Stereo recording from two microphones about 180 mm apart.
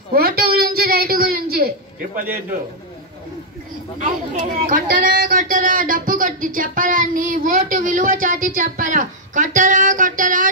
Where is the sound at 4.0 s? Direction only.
45° right (ahead or behind).